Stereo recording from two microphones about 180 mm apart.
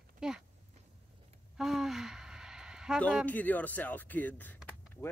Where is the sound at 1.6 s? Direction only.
Centre (ahead or behind).